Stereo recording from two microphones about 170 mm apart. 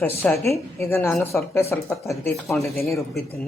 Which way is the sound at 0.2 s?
15° left (ahead or behind).